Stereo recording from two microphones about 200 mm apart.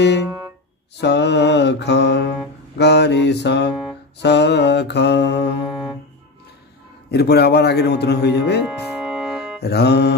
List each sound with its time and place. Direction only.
1.0 s speech: 60° left (ahead or behind)
7.1 s speech: 55° left (ahead or behind)
8.6 s organ: 5° right (ahead or behind)
9.6 s speech: 55° left (ahead or behind)